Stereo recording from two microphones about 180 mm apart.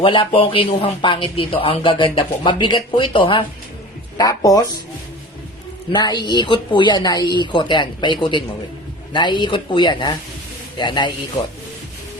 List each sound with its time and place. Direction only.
0.0 s speech: 30° left (ahead or behind)
5.9 s speech: 25° left (ahead or behind)